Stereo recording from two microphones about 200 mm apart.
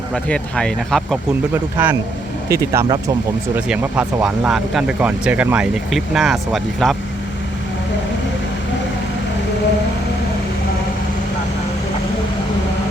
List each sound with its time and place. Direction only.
0.1 s speech: 5° left (ahead or behind)
1.8 s speech: 10° right (ahead or behind)
3.5 s speech: 5° right (ahead or behind)